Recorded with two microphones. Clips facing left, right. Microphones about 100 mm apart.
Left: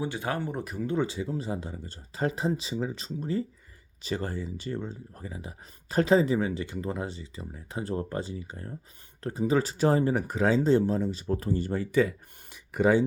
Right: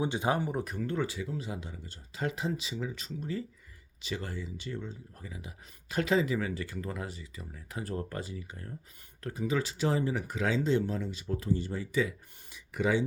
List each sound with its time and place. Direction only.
0.0 s speech: 20° right (ahead or behind)
0.5 s speech: centre (ahead or behind)
0.9 s speech: 25° left (ahead or behind); by 13.1 s 45° left (ahead or behind)